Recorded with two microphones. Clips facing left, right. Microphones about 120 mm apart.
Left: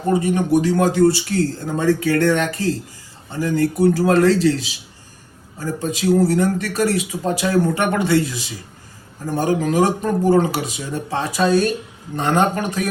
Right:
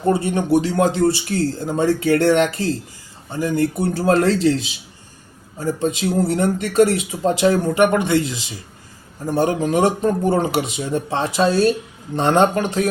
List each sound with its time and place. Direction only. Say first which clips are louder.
0.1 s speech: even; 30° right (ahead or behind)